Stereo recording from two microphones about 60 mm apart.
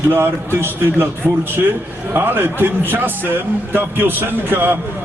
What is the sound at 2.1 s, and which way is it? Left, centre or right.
A man's voice, right.